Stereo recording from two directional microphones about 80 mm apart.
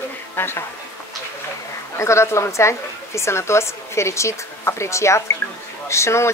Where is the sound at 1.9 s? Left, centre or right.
Left.